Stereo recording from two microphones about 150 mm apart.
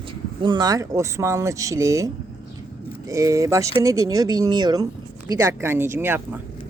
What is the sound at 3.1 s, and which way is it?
Speech, 20° right (ahead or behind).